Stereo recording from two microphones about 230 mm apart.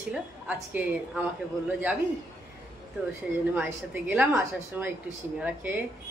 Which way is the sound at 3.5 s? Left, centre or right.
Centre.